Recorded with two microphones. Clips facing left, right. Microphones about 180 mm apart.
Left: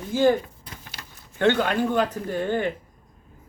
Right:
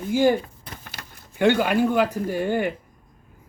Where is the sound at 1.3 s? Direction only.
10° right (ahead or behind).